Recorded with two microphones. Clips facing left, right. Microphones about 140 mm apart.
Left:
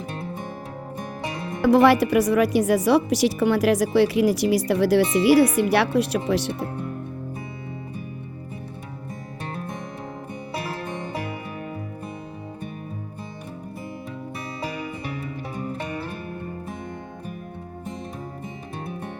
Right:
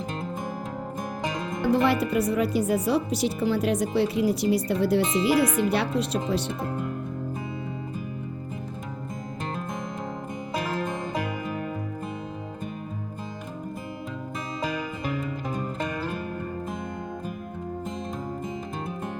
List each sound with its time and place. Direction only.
1.6 s a woman's voice: 85° left